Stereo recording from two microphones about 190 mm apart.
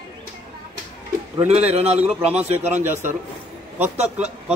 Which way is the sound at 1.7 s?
35° right (ahead or behind).